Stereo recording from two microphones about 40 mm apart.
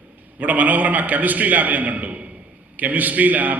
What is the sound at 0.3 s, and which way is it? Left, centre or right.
A man's voice, right.